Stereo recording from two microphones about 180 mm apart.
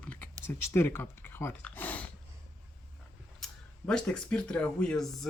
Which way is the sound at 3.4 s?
5° left (ahead or behind).